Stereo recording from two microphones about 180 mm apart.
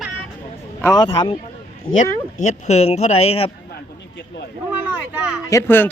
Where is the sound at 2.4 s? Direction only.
40° left (ahead or behind).